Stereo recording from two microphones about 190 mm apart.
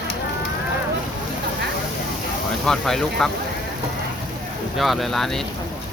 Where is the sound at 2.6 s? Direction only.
Centre (ahead or behind).